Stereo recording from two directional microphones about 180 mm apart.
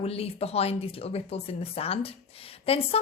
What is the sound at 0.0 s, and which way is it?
A woman's voice, 35° left (ahead or behind).